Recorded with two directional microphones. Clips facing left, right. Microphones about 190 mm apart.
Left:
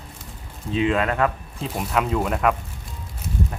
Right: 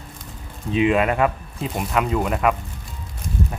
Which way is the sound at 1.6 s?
Centre (ahead or behind).